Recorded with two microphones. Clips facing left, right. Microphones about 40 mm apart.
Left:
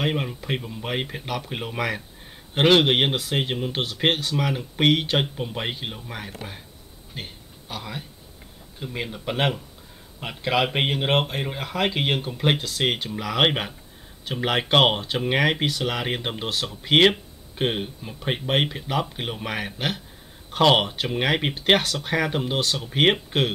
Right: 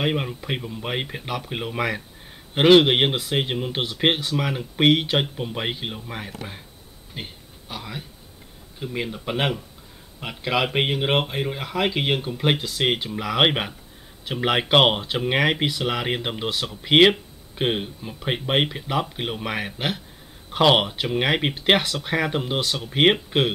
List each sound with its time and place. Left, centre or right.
0.0 s speech: centre
7.2 s a sound: centre
8.7 s speech: centre